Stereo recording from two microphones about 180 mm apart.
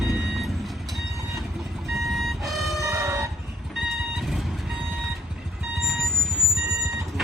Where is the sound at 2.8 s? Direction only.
15° right (ahead or behind).